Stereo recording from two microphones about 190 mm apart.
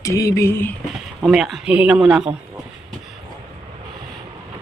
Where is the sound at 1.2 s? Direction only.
Centre (ahead or behind).